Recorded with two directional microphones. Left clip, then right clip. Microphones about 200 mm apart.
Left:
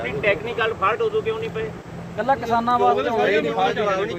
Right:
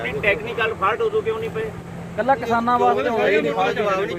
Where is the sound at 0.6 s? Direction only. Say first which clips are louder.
Even; 45° right (ahead or behind).